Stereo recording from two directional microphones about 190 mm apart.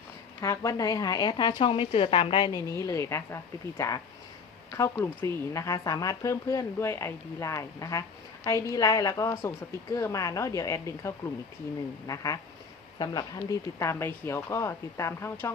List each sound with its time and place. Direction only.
0.4 s a woman's voice: 15° left (ahead or behind)